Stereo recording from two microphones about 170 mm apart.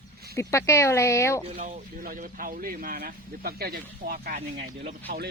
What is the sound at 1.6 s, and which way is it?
Speech, 50° right (ahead or behind).